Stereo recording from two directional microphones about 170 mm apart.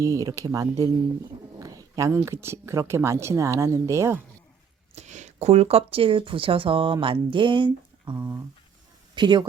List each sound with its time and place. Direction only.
0.0 s speech: 20° right (ahead or behind)
4.9 s speech: 45° right (ahead or behind); by 9.5 s 25° right (ahead or behind)